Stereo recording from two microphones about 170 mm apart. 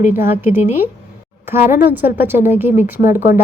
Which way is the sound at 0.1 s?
10° right (ahead or behind).